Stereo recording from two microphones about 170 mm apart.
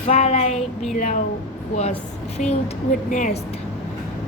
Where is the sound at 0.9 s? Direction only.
50° left (ahead or behind).